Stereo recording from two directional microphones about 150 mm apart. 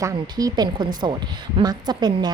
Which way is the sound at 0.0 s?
25° right (ahead or behind).